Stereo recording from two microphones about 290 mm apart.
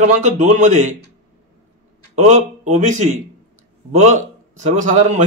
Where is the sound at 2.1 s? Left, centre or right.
Right.